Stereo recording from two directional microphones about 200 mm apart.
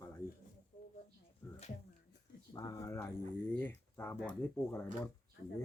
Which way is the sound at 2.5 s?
15° left (ahead or behind).